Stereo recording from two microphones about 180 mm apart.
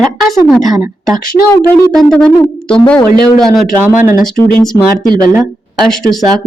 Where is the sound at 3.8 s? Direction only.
15° right (ahead or behind).